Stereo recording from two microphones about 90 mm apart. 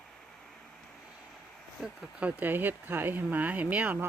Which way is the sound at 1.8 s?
10° right (ahead or behind).